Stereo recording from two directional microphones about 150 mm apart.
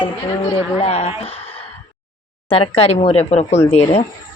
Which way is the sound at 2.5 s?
40° left (ahead or behind).